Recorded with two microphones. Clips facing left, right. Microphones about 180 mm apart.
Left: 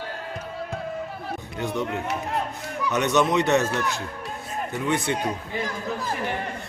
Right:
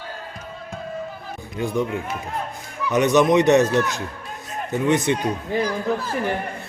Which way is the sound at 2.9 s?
15° right (ahead or behind).